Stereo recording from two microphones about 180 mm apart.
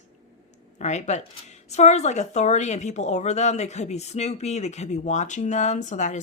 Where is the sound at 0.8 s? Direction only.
40° left (ahead or behind).